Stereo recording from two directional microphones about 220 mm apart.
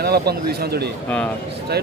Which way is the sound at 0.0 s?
45° right (ahead or behind).